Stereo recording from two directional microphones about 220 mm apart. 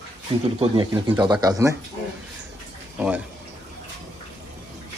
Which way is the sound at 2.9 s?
5° right (ahead or behind).